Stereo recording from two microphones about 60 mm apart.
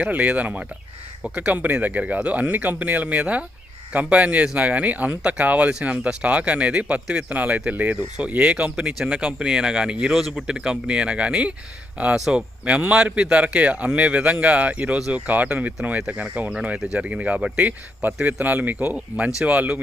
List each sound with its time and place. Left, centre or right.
0.0 s speech: right; by 10.4 s centre
10.4 s speech: centre
16.7 s speech: centre
17.0 s speech: right